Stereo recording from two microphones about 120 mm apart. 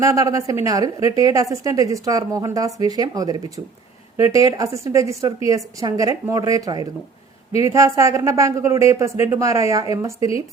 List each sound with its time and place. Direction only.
0.0 s a woman's voice: 25° right (ahead or behind)